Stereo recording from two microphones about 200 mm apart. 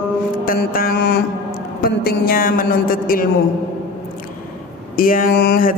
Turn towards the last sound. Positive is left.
turn(degrees=45)  # may be behind; listen again after turning